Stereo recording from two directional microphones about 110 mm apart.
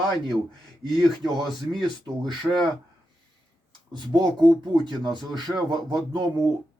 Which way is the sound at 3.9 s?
40° right (ahead or behind).